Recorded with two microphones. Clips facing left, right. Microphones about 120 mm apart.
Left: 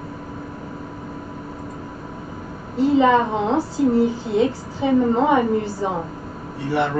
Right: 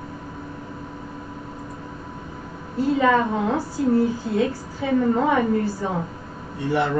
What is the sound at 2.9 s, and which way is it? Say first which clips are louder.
A woman's voice: left 3 dB; 20° left (ahead or behind).